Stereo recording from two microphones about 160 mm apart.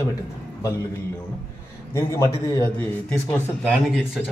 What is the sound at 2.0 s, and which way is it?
A man's voice, 20° left (ahead or behind).